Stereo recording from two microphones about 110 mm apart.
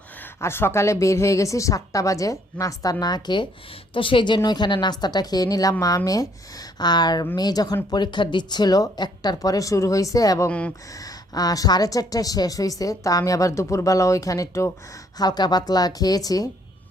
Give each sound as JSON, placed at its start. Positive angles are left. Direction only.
{"t": 0.3, "sound": "a woman's voice", "side_deg": 20}
{"t": 3.9, "sound": "a woman's voice", "side_deg": 50}
{"t": 15.2, "sound": "a woman's voice", "side_deg": 40}